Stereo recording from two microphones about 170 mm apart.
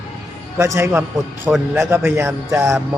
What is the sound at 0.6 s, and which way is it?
Speech, 15° right (ahead or behind).